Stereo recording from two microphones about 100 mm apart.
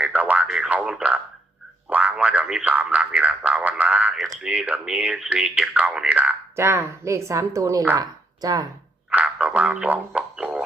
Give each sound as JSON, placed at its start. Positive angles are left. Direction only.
{"t": 0.0, "sound": "a sound", "side_deg": -15}
{"t": 6.6, "sound": "speech", "side_deg": -25}
{"t": 9.0, "sound": "speech", "side_deg": -15}
{"t": 10.2, "sound": "music", "side_deg": -10}